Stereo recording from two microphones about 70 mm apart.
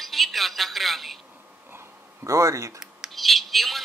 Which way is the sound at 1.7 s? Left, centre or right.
Right.